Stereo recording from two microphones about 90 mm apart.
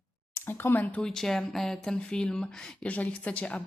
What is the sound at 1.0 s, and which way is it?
Speech, 5° left (ahead or behind).